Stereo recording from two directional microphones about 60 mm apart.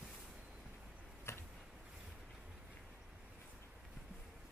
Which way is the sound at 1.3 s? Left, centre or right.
Left.